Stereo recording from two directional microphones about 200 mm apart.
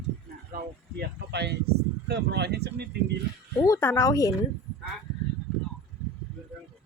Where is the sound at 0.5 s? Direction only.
55° right (ahead or behind).